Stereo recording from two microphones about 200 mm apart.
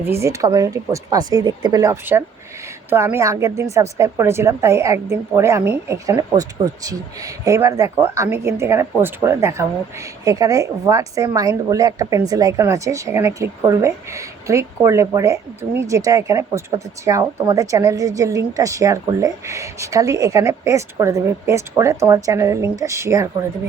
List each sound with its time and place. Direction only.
0.0 s a woman's voice: 15° right (ahead or behind)